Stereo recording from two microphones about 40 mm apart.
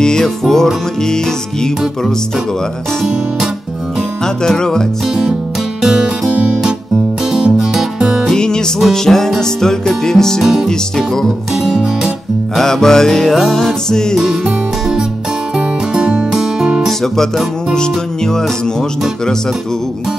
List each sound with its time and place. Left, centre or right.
0.0 s music: centre
4.4 s music: centre
5.8 s music: centre
8.4 s music: centre
10.4 s music: centre
10.7 s music: centre
11.5 s music: centre
12.5 s music: centre
14.2 s music: centre
17.7 s music: centre